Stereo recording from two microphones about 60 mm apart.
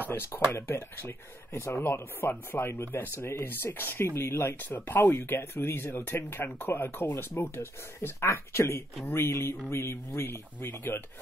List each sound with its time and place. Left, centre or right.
0.1 s speech: left
9.0 s speech: left